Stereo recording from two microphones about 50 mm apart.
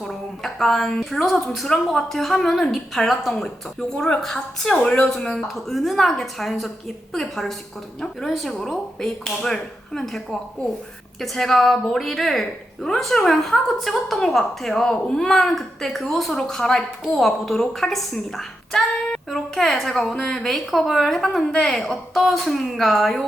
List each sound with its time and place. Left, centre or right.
0.0 s a woman's voice: centre
3.9 s a woman's voice: centre
5.5 s a woman's voice: centre